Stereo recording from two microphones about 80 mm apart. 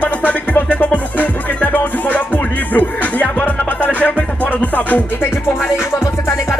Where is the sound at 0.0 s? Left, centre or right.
Centre.